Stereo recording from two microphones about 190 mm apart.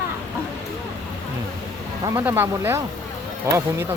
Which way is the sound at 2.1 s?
10° right (ahead or behind).